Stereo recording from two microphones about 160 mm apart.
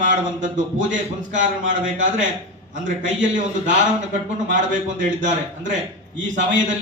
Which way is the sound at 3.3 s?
50° right (ahead or behind).